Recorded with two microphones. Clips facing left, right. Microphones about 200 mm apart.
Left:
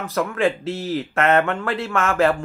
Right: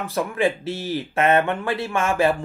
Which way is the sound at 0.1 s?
15° right (ahead or behind).